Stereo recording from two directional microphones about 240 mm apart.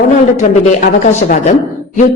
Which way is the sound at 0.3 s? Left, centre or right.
Left.